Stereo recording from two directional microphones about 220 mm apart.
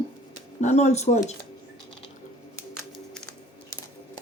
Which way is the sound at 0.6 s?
30° left (ahead or behind).